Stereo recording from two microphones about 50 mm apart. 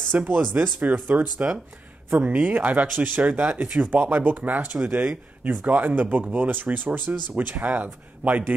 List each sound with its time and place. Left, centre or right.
0.1 s speech: right
1.2 s speech: centre
2.1 s speech: right
5.4 s speech: right